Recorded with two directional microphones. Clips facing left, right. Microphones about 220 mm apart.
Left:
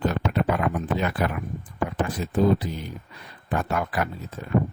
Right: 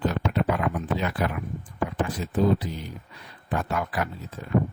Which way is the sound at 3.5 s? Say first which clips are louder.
Left 2 dB; 50° left (ahead or behind).